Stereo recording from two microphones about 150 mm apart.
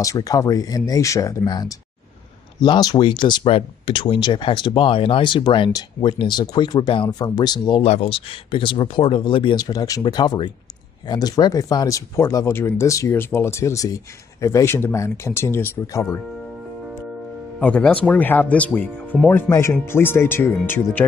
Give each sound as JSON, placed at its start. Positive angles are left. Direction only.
{"t": 0.0, "sound": "speech", "side_deg": 20}
{"t": 7.8, "sound": "speech", "side_deg": 40}
{"t": 17.6, "sound": "speech", "side_deg": 10}